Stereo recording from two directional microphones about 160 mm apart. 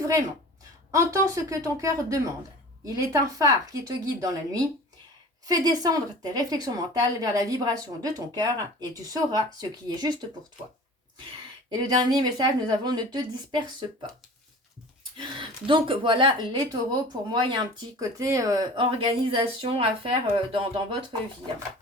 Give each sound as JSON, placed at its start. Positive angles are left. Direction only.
{"t": 0.9, "sound": "a woman's voice", "side_deg": -20}
{"t": 5.5, "sound": "a woman's voice", "side_deg": -25}
{"t": 11.7, "sound": "a woman's voice", "side_deg": -25}
{"t": 15.2, "sound": "a woman's voice", "side_deg": -30}
{"t": 18.9, "sound": "speech", "side_deg": -35}